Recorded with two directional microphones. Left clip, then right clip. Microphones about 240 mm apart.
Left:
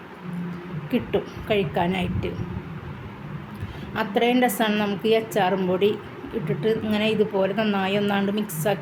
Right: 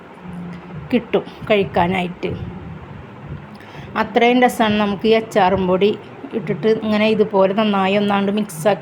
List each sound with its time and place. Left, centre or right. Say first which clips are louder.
0.9 s a woman's voice: right 6 dB; centre
3.9 s a woman's voice: right 7 dB; centre